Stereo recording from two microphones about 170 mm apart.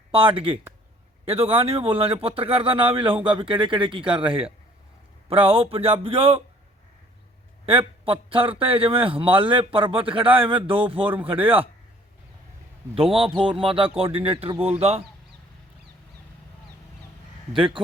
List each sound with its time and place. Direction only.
0.1 s a man's voice: 30° right (ahead or behind)
7.6 s speech: 35° right (ahead or behind)
11.0 s speech: 10° right (ahead or behind)
12.9 s speech: 30° right (ahead or behind)